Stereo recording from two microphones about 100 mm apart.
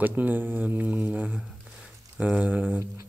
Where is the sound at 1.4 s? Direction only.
5° right (ahead or behind).